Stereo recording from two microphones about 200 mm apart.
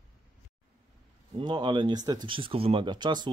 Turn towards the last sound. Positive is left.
turn(degrees=-20)  # may be behind; listen again after turning